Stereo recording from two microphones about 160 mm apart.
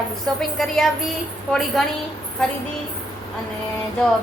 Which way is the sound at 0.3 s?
Centre (ahead or behind).